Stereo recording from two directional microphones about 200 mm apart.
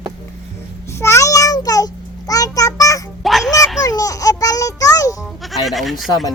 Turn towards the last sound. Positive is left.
turn(degrees=0)  # may be behind; listen again after turning